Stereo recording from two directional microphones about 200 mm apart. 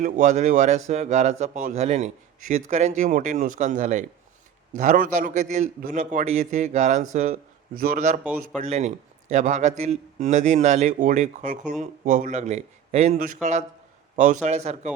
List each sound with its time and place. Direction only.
0.0 s a man's voice: 40° right (ahead or behind)